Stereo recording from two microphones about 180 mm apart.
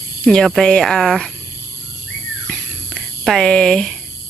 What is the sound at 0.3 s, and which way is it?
Speech, 5° left (ahead or behind).